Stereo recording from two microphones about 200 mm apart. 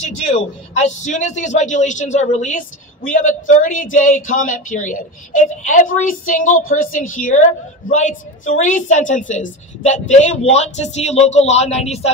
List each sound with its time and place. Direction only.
0.0 s a man's voice: 35° left (ahead or behind)